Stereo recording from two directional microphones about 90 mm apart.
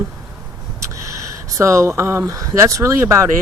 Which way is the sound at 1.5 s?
35° right (ahead or behind).